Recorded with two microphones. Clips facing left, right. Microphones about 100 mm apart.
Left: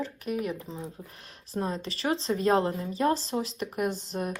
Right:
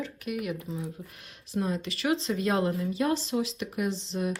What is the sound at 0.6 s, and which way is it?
Speech, 35° left (ahead or behind).